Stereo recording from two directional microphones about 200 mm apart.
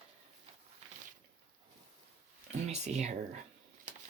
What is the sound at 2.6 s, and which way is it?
Speech, 35° right (ahead or behind).